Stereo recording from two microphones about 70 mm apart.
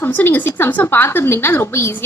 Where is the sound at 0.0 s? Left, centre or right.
Left.